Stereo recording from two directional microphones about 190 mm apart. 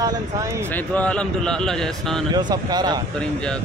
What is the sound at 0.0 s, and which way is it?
Speech, 20° right (ahead or behind).